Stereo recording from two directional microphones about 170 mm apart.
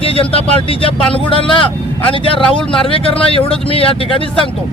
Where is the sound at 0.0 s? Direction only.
35° left (ahead or behind).